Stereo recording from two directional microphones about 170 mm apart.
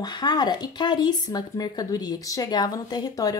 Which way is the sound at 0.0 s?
25° left (ahead or behind).